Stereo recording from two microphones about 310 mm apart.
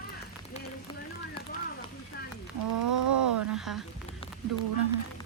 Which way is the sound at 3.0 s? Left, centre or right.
Right.